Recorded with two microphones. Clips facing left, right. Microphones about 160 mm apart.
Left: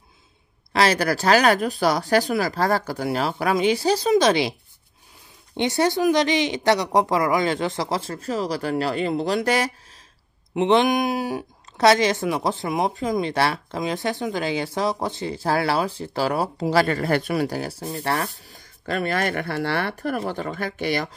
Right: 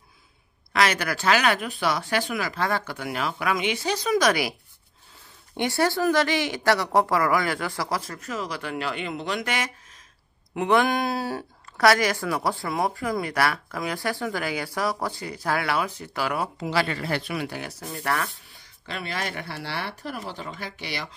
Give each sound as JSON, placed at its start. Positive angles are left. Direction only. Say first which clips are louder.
{"t": 0.7, "sound": "speech", "louder": "left 4 dB", "side_deg": 35}
{"t": 5.6, "sound": "speech", "louder": "left 3 dB", "side_deg": 20}
{"t": 10.5, "sound": "speech", "louder": "left 3 dB", "side_deg": 20}